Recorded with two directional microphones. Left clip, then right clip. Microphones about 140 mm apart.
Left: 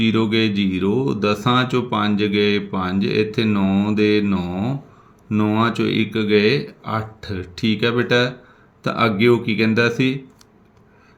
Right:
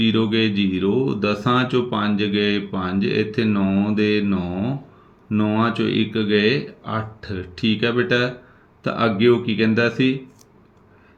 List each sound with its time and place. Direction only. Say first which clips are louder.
0.0 s speech: left 1 dB; 45° left (ahead or behind)